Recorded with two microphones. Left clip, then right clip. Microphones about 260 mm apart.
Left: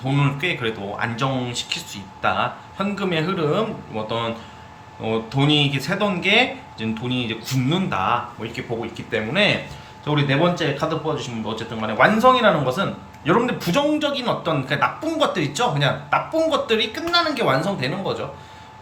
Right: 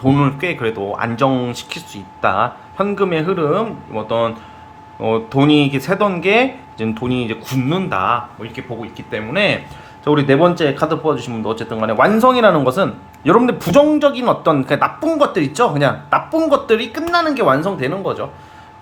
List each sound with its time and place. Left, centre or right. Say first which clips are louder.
0.0 s speech: right 7 dB; centre
10.0 s speech: right 7 dB; centre